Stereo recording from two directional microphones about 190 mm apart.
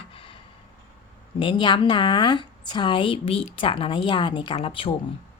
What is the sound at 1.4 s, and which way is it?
A woman's voice, 25° left (ahead or behind).